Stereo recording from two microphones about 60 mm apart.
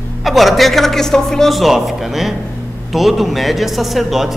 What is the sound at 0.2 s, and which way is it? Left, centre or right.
A man's voice, centre.